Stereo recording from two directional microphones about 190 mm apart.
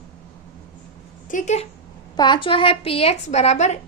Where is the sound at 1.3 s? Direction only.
40° left (ahead or behind).